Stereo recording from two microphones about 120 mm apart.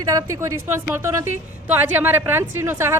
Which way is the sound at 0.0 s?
30° right (ahead or behind).